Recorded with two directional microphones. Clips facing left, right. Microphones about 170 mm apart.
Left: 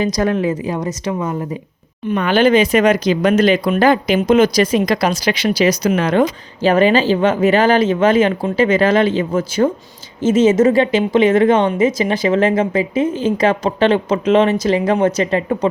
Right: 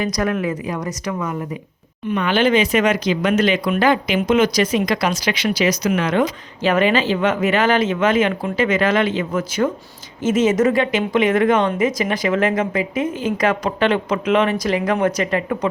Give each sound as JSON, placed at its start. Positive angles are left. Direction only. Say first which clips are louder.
{"t": 0.0, "sound": "speech", "louder": "left 4 dB", "side_deg": 30}
{"t": 2.0, "sound": "speech", "louder": "left 4 dB", "side_deg": 40}